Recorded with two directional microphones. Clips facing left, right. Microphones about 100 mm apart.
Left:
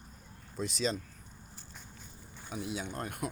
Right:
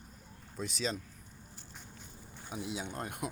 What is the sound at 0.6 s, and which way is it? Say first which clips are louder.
Speech: left 3 dB; 5° right (ahead or behind).